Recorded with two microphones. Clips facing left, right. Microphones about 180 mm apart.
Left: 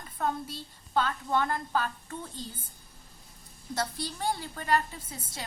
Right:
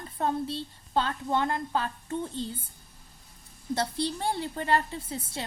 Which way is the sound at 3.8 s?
25° right (ahead or behind).